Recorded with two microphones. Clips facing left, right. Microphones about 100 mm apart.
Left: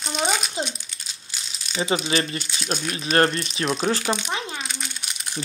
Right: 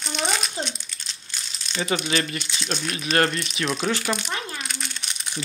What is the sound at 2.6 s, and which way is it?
Speech, 5° left (ahead or behind).